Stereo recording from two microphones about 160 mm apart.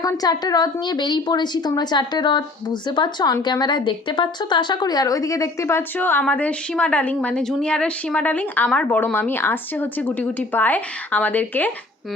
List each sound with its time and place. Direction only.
0.0 s a woman's voice: 20° left (ahead or behind)